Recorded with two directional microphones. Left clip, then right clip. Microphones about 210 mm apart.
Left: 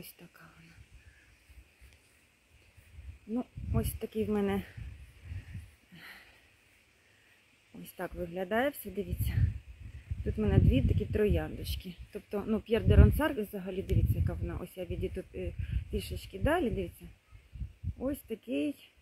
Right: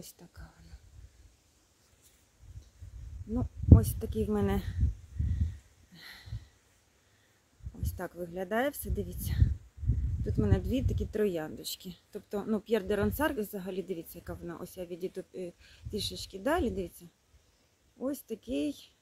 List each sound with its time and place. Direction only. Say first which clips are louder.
0.0 s speech: even; centre (ahead or behind)
4.0 s speech: even; 5° right (ahead or behind)
5.9 s a sound: right 1 dB; 5° left (ahead or behind)
8.0 s speech: left 1 dB; centre (ahead or behind)
17.9 s speech: even; centre (ahead or behind)